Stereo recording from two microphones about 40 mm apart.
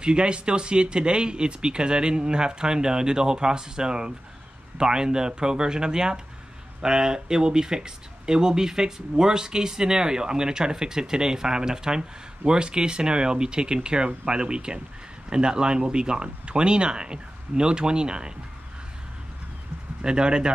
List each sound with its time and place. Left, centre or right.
0.0 s speech: right
20.0 s speech: right